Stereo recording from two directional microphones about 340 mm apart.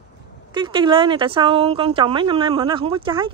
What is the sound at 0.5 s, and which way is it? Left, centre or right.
Speech, centre.